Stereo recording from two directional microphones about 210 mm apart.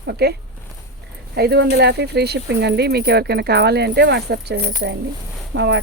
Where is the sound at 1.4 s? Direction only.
50° right (ahead or behind).